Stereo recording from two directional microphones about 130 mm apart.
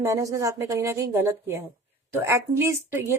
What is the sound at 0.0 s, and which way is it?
A woman's voice, 25° right (ahead or behind).